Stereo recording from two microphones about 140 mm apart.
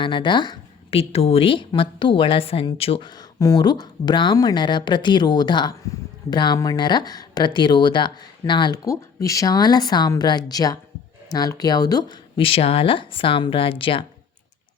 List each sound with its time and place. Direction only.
0.0 s speech: 35° left (ahead or behind)
3.1 s speech: 25° left (ahead or behind)